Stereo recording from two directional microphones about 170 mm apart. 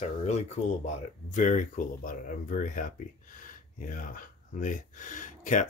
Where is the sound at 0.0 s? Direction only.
40° left (ahead or behind).